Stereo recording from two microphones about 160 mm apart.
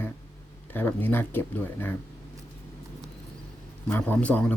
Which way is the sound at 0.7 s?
10° left (ahead or behind).